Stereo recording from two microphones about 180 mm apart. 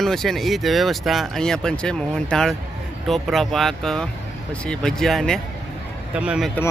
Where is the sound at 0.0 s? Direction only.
Centre (ahead or behind).